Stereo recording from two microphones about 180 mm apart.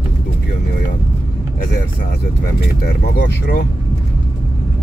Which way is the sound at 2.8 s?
60° left (ahead or behind).